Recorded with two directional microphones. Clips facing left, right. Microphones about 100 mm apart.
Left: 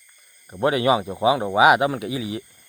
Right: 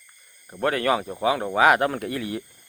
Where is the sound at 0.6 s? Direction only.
15° left (ahead or behind).